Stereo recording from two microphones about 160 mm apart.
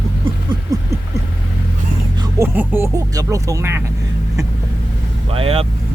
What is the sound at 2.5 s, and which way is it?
Speech, 10° right (ahead or behind).